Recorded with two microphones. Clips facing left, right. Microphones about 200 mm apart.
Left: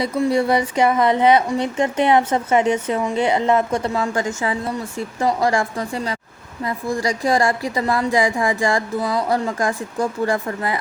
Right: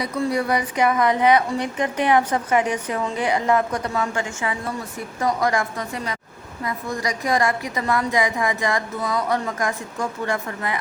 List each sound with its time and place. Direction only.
0.0 s a woman's voice: 25° left (ahead or behind)